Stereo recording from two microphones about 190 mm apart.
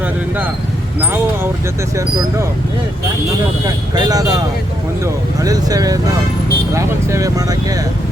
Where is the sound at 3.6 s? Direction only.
20° right (ahead or behind).